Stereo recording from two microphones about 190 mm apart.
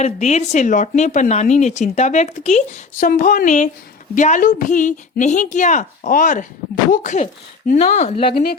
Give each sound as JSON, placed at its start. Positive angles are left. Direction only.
{"t": 0.0, "sound": "a woman's voice", "side_deg": 35}